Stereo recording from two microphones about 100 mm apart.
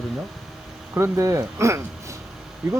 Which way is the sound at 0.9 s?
30° right (ahead or behind).